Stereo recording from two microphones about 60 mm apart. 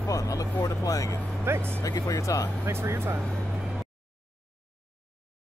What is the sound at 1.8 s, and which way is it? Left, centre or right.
Speech, left.